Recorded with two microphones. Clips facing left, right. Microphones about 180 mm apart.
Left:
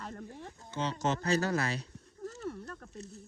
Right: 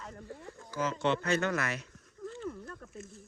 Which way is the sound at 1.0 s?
40° left (ahead or behind).